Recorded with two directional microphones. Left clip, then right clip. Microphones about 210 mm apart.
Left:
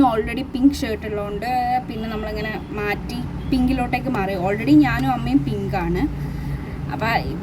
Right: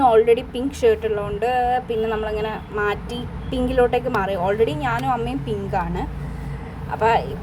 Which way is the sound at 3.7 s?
10° right (ahead or behind).